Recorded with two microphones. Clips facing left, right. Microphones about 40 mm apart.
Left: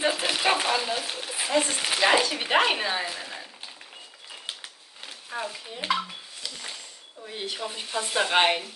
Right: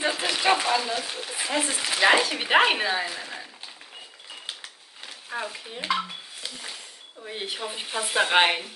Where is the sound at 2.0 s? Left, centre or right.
Centre.